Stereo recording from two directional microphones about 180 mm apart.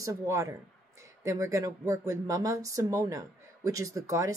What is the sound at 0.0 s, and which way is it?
A woman's voice, 15° right (ahead or behind).